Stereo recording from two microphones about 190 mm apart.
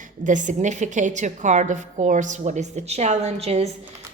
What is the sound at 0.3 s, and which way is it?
A woman's voice, 40° right (ahead or behind).